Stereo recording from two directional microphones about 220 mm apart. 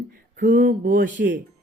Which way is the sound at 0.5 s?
35° right (ahead or behind).